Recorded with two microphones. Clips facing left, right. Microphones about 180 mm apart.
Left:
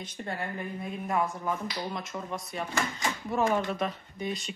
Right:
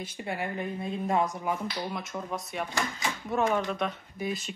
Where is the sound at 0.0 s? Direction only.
10° right (ahead or behind).